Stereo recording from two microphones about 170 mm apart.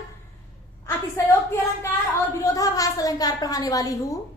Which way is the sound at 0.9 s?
15° left (ahead or behind).